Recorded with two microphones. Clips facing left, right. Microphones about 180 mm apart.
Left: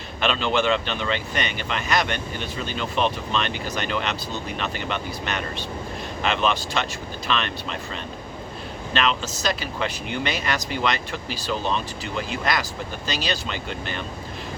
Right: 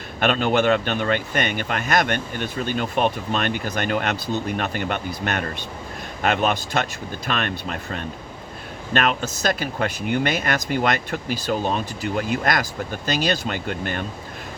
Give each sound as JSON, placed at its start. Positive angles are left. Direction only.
{"t": 0.2, "sound": "speech", "side_deg": -50}